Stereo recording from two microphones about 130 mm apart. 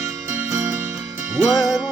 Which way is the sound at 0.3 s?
20° right (ahead or behind).